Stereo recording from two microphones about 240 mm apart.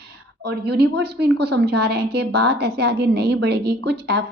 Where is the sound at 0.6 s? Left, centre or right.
Right.